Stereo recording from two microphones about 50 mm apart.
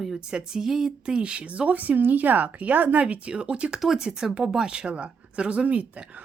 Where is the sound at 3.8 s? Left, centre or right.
Centre.